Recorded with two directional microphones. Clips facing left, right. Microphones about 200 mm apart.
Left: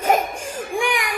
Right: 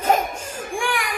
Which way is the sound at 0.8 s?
20° left (ahead or behind).